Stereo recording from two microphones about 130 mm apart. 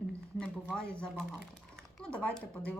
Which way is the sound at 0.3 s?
5° left (ahead or behind).